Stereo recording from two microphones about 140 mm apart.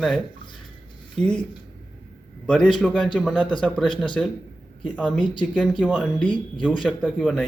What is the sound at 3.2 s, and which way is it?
Speech, 10° right (ahead or behind).